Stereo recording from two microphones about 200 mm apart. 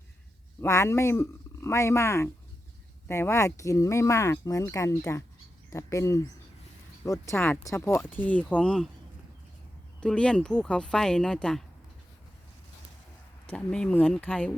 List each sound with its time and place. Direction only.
0.6 s speech: 15° left (ahead or behind)
10.0 s speech: 5° left (ahead or behind)
13.5 s speech: 5° left (ahead or behind)